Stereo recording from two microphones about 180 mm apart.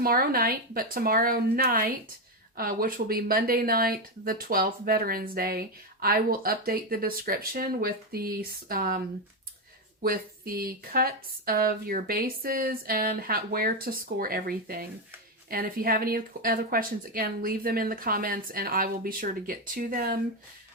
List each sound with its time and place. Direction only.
0.0 s speech: 55° right (ahead or behind)
10.0 s speech: 55° right (ahead or behind)